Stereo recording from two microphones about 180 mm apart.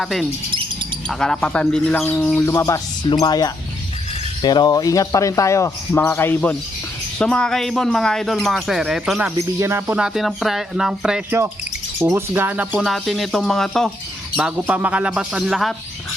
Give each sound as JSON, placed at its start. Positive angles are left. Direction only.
{"t": 0.0, "sound": "a man's voice", "side_deg": 0}
{"t": 9.6, "sound": "speech", "side_deg": -15}
{"t": 11.9, "sound": "speech", "side_deg": -15}